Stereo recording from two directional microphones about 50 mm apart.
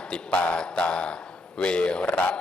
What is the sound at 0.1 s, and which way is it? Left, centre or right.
Speech, left.